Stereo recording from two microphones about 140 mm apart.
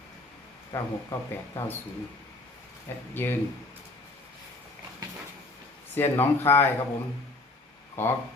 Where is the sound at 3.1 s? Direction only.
15° left (ahead or behind).